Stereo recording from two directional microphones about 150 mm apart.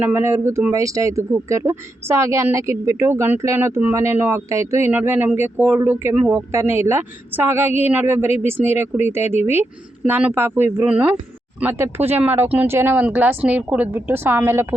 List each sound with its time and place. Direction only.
0.0 s speech: 15° right (ahead or behind)